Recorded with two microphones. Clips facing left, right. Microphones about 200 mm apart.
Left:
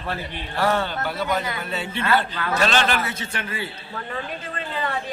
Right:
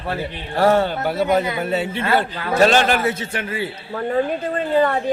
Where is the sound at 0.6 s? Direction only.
45° right (ahead or behind).